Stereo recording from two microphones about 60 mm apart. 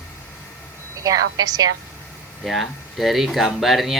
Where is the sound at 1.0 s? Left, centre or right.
Right.